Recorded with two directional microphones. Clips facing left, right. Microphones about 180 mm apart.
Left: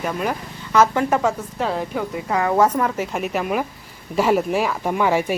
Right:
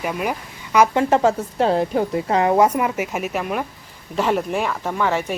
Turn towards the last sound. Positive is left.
turn(degrees=10)  # may be behind; listen again after turning